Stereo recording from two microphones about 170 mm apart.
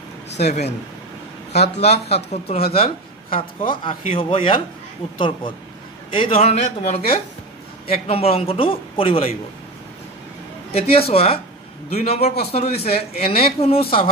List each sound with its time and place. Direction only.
0.4 s speech: 40° left (ahead or behind)
6.1 s speech: 30° left (ahead or behind)
10.7 s speech: 35° left (ahead or behind)